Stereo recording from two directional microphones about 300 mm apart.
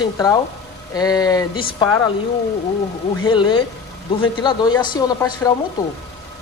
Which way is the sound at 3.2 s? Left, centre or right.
Centre.